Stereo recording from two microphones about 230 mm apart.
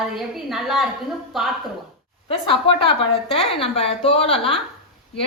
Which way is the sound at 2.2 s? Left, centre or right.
Left.